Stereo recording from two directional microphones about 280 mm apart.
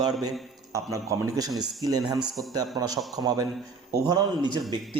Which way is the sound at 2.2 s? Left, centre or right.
Centre.